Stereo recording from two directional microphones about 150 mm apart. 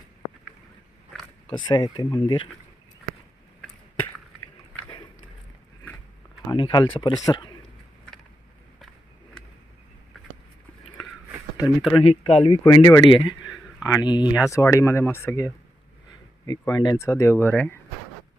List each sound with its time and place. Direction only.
1.5 s speech: 30° left (ahead or behind)
6.5 s speech: 30° left (ahead or behind)
11.6 s speech: centre (ahead or behind)
11.9 s speech: 40° left (ahead or behind); by 17.7 s 10° left (ahead or behind)